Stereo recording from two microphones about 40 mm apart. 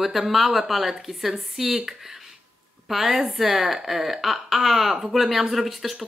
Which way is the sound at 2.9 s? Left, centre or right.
Centre.